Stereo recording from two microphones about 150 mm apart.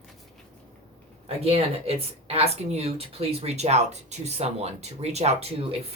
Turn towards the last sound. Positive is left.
turn(degrees=-45)  # may be behind; listen again after turning